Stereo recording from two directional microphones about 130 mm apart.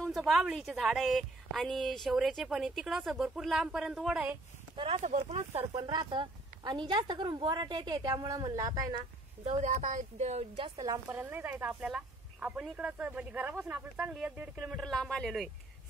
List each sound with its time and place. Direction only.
0.0 s a woman's voice: 5° left (ahead or behind)
4.7 s a woman's voice: 50° right (ahead or behind)
5.8 s a woman's voice: 35° right (ahead or behind)
9.4 s a woman's voice: 50° right (ahead or behind)
9.7 s speech: 75° right (ahead or behind)
10.8 s a woman's voice: 25° right (ahead or behind)
11.1 s speech: 15° right (ahead or behind); by 15.5 s centre (ahead or behind)